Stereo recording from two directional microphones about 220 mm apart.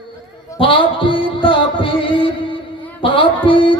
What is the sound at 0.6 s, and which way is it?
Music, 25° left (ahead or behind).